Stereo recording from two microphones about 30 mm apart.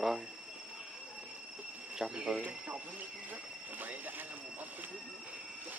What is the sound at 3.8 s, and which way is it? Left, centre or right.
Speech, right.